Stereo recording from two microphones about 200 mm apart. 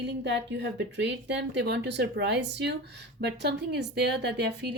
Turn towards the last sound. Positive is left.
turn(degrees=-55)  # may be behind; listen again after turning